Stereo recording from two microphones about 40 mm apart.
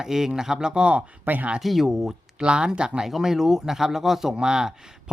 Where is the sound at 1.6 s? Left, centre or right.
Centre.